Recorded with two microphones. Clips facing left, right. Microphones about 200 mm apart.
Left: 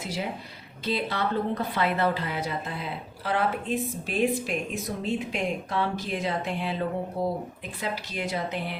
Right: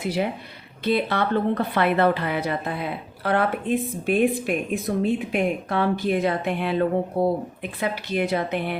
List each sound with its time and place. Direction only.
0.0 s a woman's voice: 60° right (ahead or behind)